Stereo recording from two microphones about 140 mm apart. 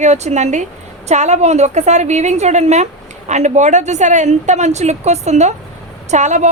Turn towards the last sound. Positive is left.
turn(degrees=-60)  # may be behind; listen again after turning